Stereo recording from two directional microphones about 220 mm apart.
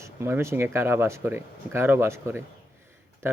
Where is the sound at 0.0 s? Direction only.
10° right (ahead or behind).